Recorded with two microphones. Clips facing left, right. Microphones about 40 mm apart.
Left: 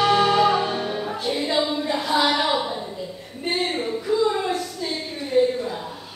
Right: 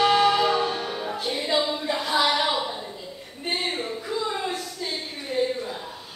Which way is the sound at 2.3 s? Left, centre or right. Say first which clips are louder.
Left 2 dB; centre.